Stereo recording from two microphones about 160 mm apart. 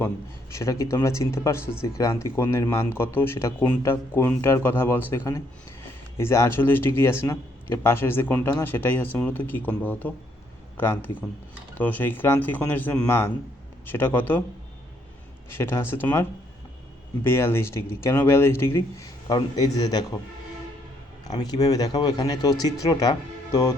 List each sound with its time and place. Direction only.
0.5 s speech: 20° left (ahead or behind)
15.4 s speech: 15° left (ahead or behind)
17.2 s speech: 15° left (ahead or behind)
21.2 s speech: 25° left (ahead or behind)